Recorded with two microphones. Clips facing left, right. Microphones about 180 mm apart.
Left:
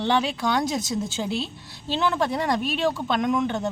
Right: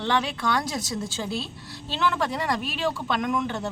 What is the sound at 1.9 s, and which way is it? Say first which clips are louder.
Speech: left 2 dB; 25° left (ahead or behind).